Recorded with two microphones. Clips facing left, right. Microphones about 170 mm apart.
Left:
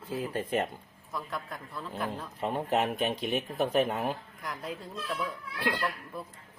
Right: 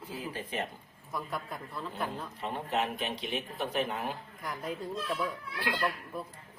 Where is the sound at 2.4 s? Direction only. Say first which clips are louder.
Left 4 dB; 50° left (ahead or behind).